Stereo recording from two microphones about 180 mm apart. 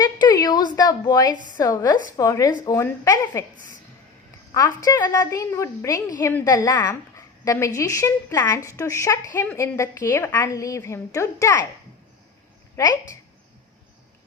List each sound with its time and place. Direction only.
0.0 s a sound: 25° left (ahead or behind)
1.5 s a woman's voice: 20° left (ahead or behind)
4.5 s a woman's voice: 20° left (ahead or behind)
12.7 s a woman's voice: 20° left (ahead or behind)